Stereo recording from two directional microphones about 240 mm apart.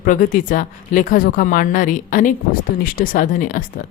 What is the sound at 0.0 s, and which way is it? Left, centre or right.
Speech, left.